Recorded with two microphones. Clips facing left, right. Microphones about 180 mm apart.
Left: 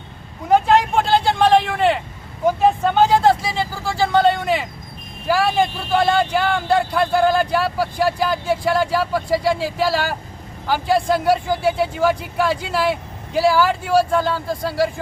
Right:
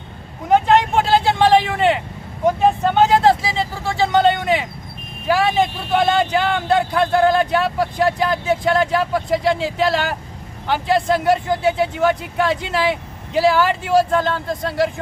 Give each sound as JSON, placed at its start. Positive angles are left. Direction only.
{"t": 0.4, "sound": "vehicle", "side_deg": 0}
{"t": 2.5, "sound": "a man's voice", "side_deg": 0}